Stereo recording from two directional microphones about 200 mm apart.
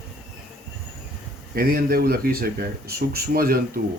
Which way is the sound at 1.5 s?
45° right (ahead or behind).